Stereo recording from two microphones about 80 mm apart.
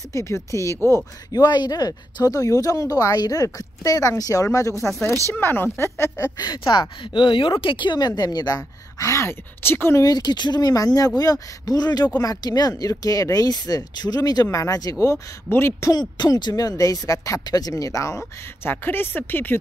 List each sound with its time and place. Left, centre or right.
0.1 s speech: left
1.3 s speech: left
4.8 s speech: centre
5.3 s speech: left
6.3 s speech: left
8.2 s speech: left
9.0 s speech: left
10.0 s speech: left
15.5 s speech: left
15.9 s speech: left
18.6 s speech: left